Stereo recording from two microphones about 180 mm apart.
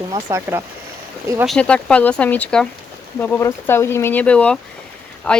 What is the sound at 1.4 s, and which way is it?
Speech, 5° left (ahead or behind).